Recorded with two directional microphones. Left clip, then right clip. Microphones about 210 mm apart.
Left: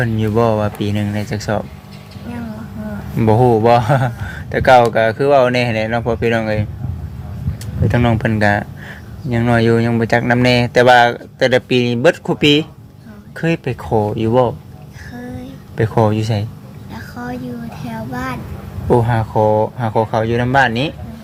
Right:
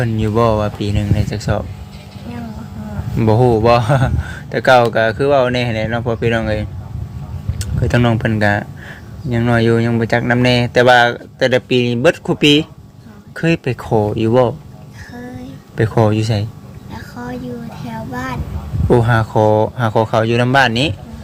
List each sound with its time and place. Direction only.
0.0 s speech: 5° right (ahead or behind)
3.2 s speech: 5° right (ahead or behind)
15.1 s child singing: centre (ahead or behind)
15.8 s speech: 15° right (ahead or behind)
16.9 s a sound: centre (ahead or behind)
17.8 s speech: centre (ahead or behind)
18.9 s speech: 20° right (ahead or behind)